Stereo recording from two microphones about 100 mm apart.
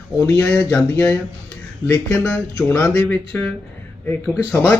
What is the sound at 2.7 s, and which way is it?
Speech, 30° left (ahead or behind).